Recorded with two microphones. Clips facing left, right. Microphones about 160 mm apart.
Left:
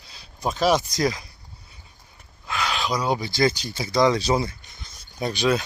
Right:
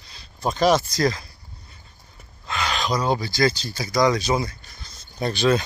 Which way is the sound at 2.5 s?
5° left (ahead or behind).